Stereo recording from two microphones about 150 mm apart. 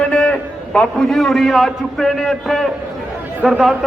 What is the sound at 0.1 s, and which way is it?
A man's voice, 5° left (ahead or behind).